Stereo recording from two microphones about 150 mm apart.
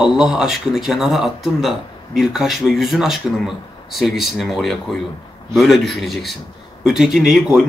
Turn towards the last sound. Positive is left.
turn(degrees=0)  # may be behind; listen again after turning